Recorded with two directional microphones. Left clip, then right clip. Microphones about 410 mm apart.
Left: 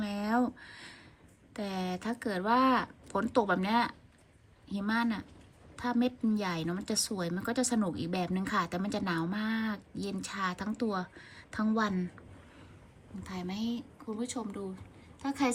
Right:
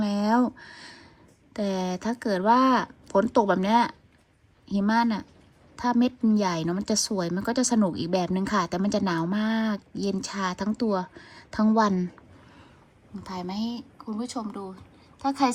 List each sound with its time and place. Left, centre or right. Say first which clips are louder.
0.0 s a sound: right 7 dB; centre
1.5 s a woman's voice: right 8 dB; centre
13.2 s speech: right 6 dB; centre